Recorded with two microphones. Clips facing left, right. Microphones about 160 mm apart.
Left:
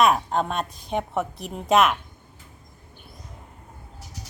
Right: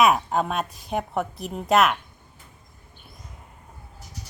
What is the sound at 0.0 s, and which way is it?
Speech, 5° right (ahead or behind).